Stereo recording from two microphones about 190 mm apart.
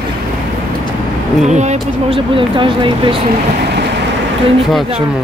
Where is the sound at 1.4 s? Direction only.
35° right (ahead or behind).